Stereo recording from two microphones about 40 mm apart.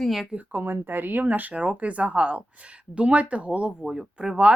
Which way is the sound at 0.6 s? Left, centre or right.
Right.